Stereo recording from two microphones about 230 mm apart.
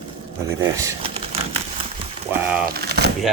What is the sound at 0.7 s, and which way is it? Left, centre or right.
Speech, centre.